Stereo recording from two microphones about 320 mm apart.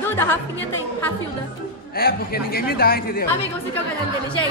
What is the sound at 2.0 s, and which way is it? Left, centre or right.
A man's voice, left.